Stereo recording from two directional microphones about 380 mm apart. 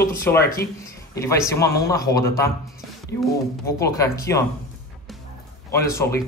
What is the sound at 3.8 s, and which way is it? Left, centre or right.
Speech, centre.